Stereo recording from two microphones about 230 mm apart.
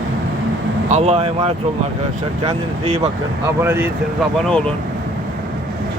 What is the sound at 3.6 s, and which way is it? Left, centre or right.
Speech, centre.